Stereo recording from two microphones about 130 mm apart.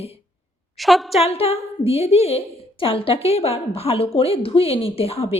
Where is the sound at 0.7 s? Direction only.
Centre (ahead or behind).